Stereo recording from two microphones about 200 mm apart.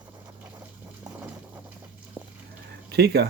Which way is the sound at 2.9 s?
55° right (ahead or behind).